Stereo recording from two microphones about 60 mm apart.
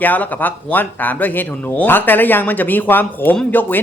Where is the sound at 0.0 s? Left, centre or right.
Left.